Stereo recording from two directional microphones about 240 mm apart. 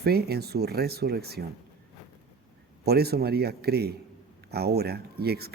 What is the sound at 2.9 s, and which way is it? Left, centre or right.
Speech, right.